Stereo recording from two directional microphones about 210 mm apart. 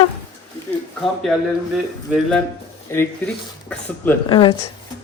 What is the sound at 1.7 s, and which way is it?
A woman's voice, centre (ahead or behind).